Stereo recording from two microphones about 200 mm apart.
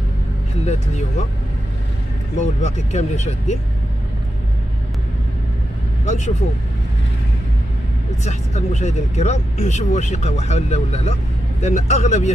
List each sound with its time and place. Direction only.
2.3 s speech: 35° left (ahead or behind)
6.0 s speech: 35° left (ahead or behind)
8.2 s speech: 35° left (ahead or behind)